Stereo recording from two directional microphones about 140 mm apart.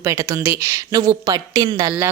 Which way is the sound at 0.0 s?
20° right (ahead or behind).